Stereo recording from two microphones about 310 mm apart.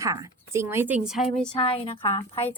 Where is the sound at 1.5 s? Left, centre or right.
Centre.